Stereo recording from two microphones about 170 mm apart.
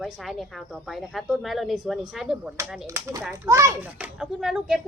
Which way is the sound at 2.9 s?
15° right (ahead or behind).